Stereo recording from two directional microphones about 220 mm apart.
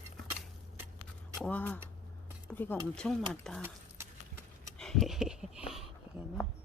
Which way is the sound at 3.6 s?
10° right (ahead or behind).